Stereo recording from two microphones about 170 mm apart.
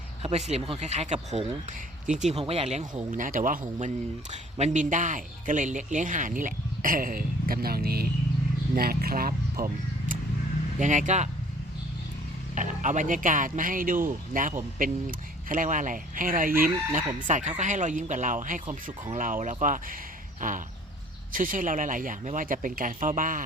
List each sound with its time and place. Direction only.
0.2 s speech: 40° right (ahead or behind)
3.1 s a man's voice: 50° right (ahead or behind)
12.5 s a man's voice: 50° right (ahead or behind)